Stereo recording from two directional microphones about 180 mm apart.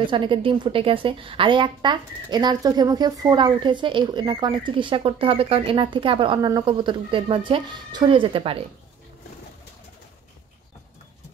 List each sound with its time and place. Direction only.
0.0 s a woman's voice: 25° right (ahead or behind)